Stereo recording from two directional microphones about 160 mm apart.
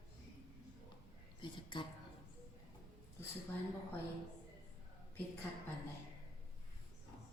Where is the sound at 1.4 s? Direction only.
30° left (ahead or behind).